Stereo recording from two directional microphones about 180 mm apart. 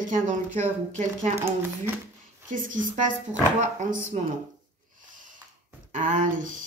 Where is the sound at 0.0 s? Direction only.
45° right (ahead or behind).